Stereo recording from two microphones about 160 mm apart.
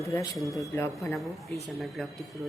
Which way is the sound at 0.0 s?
20° left (ahead or behind).